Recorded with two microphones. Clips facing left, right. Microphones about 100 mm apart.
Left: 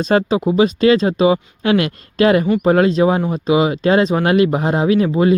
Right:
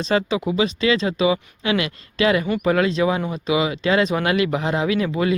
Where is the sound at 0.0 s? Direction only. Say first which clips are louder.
Left 5 dB; 45° left (ahead or behind).